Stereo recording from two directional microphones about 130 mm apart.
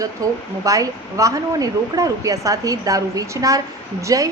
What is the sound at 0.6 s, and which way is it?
Speech, 25° right (ahead or behind).